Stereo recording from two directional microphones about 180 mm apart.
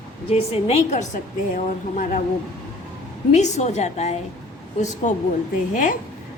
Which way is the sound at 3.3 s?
40° left (ahead or behind).